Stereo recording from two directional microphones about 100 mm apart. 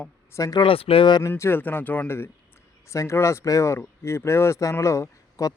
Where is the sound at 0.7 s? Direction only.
70° left (ahead or behind).